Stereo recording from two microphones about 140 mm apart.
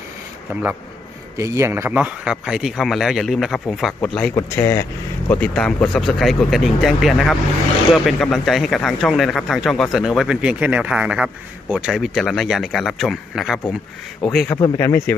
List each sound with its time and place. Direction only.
1.4 s speech: 20° right (ahead or behind); by 4.3 s 5° left (ahead or behind)
4.4 s speech: 20° left (ahead or behind)
5.3 s speech: 10° left (ahead or behind)
14.5 s speech: 20° left (ahead or behind)